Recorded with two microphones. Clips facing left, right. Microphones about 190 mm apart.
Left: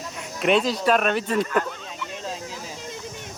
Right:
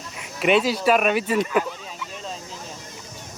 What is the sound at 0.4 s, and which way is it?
Speech, 5° right (ahead or behind).